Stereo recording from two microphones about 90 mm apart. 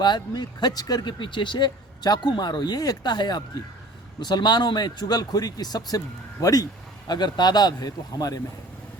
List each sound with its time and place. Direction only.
0.0 s a man's voice: 55° left (ahead or behind)